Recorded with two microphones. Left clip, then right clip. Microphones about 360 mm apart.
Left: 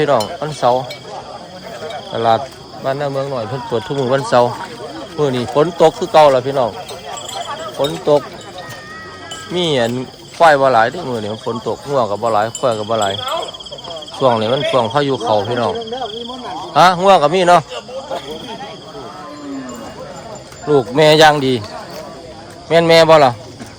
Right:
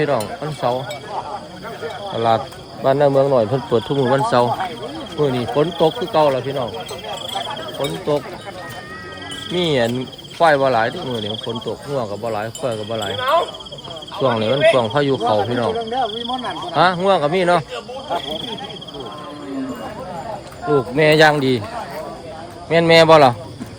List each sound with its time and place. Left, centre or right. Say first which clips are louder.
0.4 s speech: left 6 dB; centre
2.1 s speech: left 3 dB; centre
7.8 s speech: left 7 dB; centre
9.6 s speech: left 2 dB; centre
14.3 s speech: even; centre
16.0 s cricket: right 2 dB; right
16.7 s speech: left 6 dB; centre
20.9 s speech: left 4 dB; centre
22.7 s speech: left 2 dB; centre